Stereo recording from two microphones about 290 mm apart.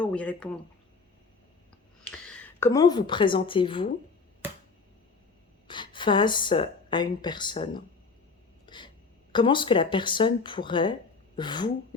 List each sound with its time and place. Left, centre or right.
0.0 s speech: centre
2.0 s a woman's voice: centre
5.6 s speech: centre
8.6 s a sound: centre
9.3 s speech: centre